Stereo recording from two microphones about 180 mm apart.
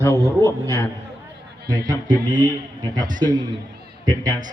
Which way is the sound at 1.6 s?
20° right (ahead or behind).